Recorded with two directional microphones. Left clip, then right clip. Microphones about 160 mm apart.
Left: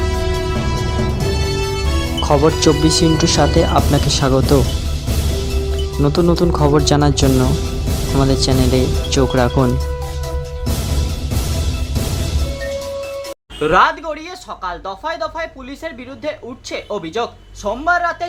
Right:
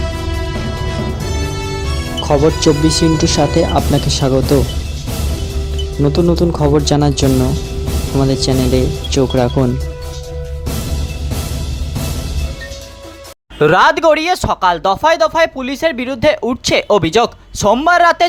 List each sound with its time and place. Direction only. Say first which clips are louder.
2.2 s speech: right 1 dB; centre (ahead or behind)
6.0 s speech: right 2 dB; centre (ahead or behind)
13.6 s speech: right 4 dB; 65° right (ahead or behind)